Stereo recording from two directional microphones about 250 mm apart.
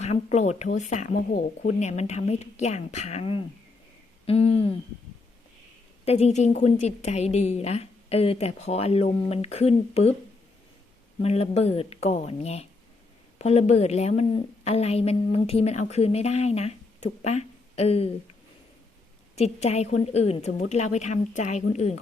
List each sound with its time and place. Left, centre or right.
0.0 s a woman's voice: left
6.1 s a woman's voice: left
11.2 s a woman's voice: left
19.4 s a woman's voice: left